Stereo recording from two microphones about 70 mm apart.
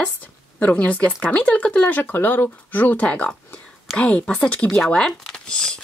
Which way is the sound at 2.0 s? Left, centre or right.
Left.